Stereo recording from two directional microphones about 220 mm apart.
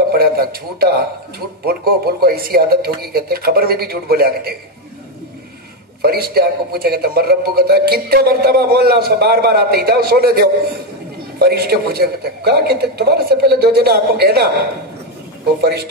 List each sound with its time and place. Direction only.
0.2 s a man's voice: 45° right (ahead or behind)
6.0 s speech: 45° right (ahead or behind)